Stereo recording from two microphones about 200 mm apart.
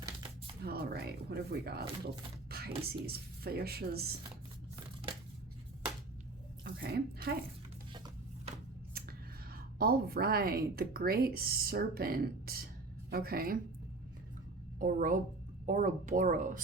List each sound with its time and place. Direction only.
0.6 s speech: 50° right (ahead or behind)
6.7 s speech: 50° right (ahead or behind)
7.9 s a sound: 20° right (ahead or behind)
9.0 s speech: 50° right (ahead or behind)
14.8 s speech: 45° right (ahead or behind)